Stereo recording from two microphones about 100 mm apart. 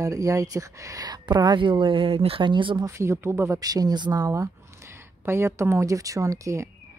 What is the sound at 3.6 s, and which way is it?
A woman's voice, 40° right (ahead or behind).